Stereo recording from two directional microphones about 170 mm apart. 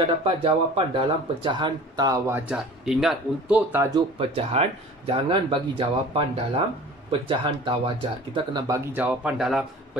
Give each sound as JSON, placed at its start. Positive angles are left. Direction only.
{"t": 0.0, "sound": "speech", "side_deg": -35}
{"t": 2.3, "sound": "speech", "side_deg": -5}
{"t": 3.9, "sound": "speech", "side_deg": -35}
{"t": 8.5, "sound": "speech", "side_deg": -20}